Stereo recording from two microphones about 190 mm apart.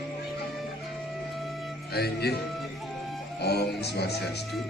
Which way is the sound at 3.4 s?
60° left (ahead or behind).